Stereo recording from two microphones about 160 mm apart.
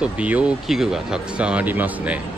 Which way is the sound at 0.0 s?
10° right (ahead or behind).